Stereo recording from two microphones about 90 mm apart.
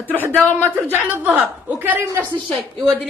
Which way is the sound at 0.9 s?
15° right (ahead or behind).